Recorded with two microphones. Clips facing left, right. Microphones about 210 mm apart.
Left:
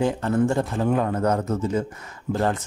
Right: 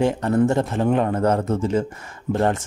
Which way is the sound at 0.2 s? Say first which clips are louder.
Right 3 dB; 20° right (ahead or behind).